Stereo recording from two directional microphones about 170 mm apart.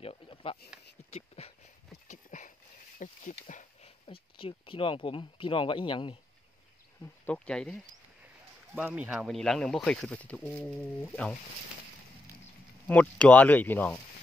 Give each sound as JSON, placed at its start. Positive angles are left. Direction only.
{"t": 0.0, "sound": "a sound", "side_deg": 35}
{"t": 2.0, "sound": "a sound", "side_deg": 45}
{"t": 4.1, "sound": "speech", "side_deg": 30}
{"t": 7.2, "sound": "speech", "side_deg": 5}
{"t": 8.7, "sound": "speech", "side_deg": -5}
{"t": 12.8, "sound": "speech", "side_deg": 10}